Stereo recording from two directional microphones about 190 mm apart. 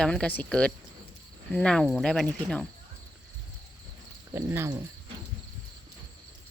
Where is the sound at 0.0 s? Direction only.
5° left (ahead or behind).